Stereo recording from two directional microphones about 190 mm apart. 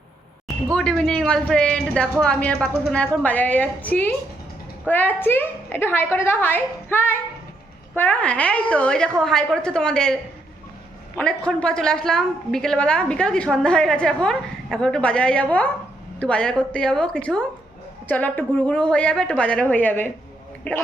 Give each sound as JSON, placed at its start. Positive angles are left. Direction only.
{"t": 0.4, "sound": "a woman's voice", "side_deg": 5}
{"t": 11.2, "sound": "a woman's voice", "side_deg": 5}